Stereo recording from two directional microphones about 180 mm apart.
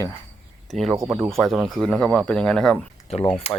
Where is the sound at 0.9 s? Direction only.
20° right (ahead or behind).